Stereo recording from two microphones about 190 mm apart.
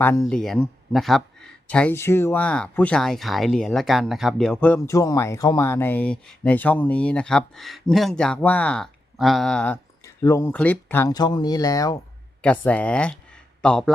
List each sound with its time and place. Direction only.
0.0 s speech: 10° left (ahead or behind)
12.4 s speech: 5° left (ahead or behind)